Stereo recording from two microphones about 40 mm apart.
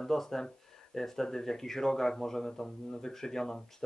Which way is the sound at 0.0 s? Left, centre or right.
Centre.